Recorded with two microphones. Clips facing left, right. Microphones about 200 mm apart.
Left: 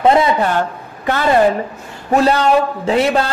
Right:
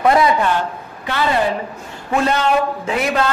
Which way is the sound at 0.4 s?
45° left (ahead or behind).